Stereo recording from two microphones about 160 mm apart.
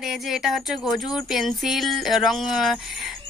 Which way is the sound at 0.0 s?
Centre (ahead or behind).